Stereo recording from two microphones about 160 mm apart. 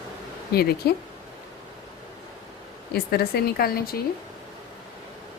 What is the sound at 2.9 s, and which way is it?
Speech, 75° left (ahead or behind).